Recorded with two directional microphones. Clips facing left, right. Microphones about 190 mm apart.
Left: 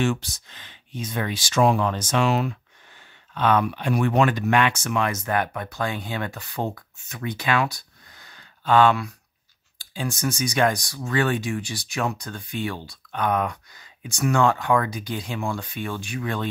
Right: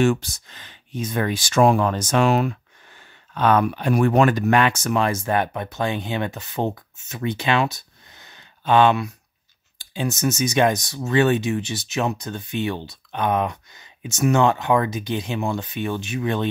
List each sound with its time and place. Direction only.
0.0 s speech: 45° right (ahead or behind); by 16.4 s 20° right (ahead or behind)